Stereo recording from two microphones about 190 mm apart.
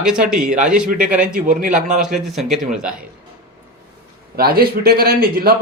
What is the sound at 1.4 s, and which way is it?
Speech, 40° right (ahead or behind).